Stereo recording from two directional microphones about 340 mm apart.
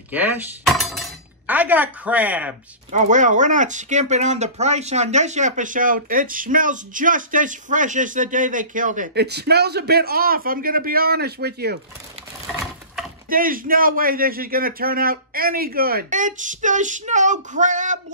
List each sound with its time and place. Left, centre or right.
0.1 s speech: centre
2.9 s speech: right
13.3 s speech: right